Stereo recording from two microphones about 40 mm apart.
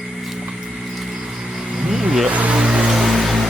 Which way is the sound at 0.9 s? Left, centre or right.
Centre.